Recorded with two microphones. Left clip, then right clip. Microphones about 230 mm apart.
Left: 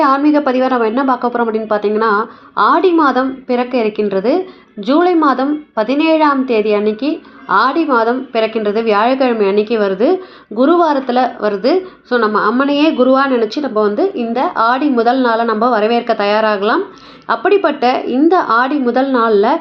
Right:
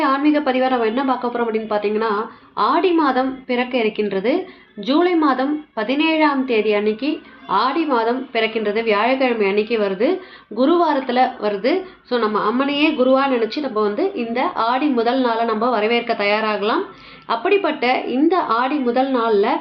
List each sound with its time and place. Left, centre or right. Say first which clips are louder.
0.0 s a woman's voice: left 6 dB; centre